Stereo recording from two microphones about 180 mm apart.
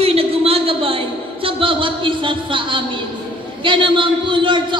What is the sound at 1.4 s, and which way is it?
A man's voice, 30° right (ahead or behind).